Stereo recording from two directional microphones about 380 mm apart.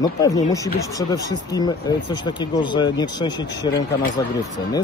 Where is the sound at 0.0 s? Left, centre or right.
Centre.